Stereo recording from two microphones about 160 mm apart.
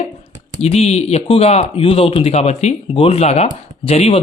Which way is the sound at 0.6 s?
40° left (ahead or behind).